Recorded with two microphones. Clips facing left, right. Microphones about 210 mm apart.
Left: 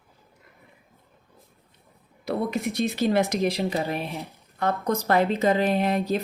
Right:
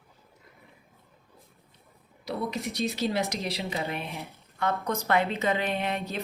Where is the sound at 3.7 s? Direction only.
35° left (ahead or behind).